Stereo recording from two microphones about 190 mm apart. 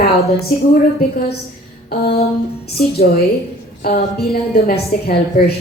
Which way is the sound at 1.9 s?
55° left (ahead or behind).